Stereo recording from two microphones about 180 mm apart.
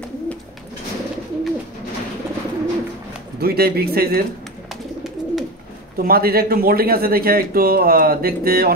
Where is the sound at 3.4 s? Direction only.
60° right (ahead or behind).